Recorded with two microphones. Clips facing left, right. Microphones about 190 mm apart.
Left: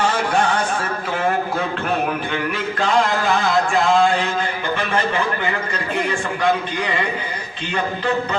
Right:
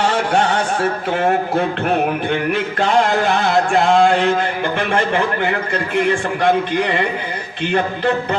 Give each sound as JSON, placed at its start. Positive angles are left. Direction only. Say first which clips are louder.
{"t": 3.7, "sound": "a man's voice", "louder": "right 4 dB", "side_deg": -60}